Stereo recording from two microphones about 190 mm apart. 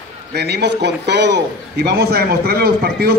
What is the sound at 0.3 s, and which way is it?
A man's voice, 60° right (ahead or behind).